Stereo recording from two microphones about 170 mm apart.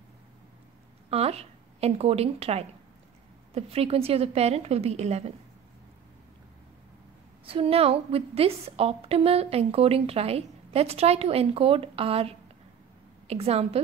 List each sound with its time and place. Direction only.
1.1 s a woman's voice: 35° right (ahead or behind)
7.4 s a woman's voice: 35° right (ahead or behind)